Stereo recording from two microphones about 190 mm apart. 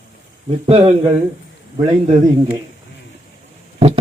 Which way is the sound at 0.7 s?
30° right (ahead or behind).